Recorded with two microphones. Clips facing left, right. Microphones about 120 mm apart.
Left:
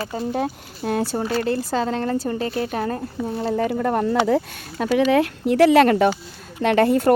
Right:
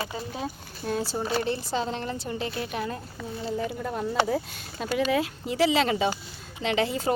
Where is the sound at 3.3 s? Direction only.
80° left; by 7.1 s 55° left (ahead or behind).